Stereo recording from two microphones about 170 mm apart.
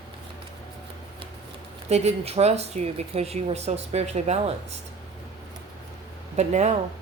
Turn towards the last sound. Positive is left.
turn(degrees=-40)  # may be behind; listen again after turning